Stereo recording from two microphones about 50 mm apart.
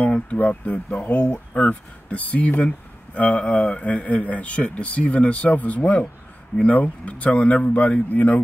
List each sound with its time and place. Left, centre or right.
0.0 s speech: left